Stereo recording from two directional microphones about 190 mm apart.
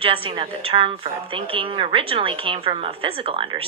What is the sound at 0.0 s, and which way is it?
A woman's voice, 30° right (ahead or behind).